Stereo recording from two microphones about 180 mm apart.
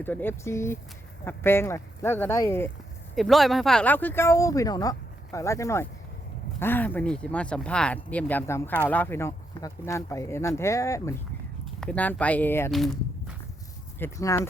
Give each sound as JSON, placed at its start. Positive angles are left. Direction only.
{"t": 0.0, "sound": "speech", "side_deg": 10}
{"t": 3.2, "sound": "speech", "side_deg": 0}
{"t": 11.6, "sound": "speech", "side_deg": 5}
{"t": 12.7, "sound": "walk", "side_deg": 0}
{"t": 14.0, "sound": "speech", "side_deg": 15}